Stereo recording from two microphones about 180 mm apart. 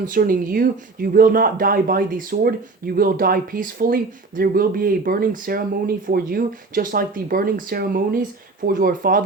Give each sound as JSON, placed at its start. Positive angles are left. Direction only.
{"t": 0.0, "sound": "speech", "side_deg": -50}